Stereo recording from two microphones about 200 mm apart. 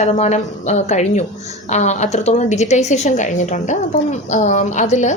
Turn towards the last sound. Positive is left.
turn(degrees=40)  # may be behind; listen again after turning